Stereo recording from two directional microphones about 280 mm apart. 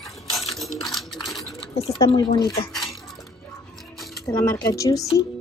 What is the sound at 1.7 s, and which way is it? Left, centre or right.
Speech, left.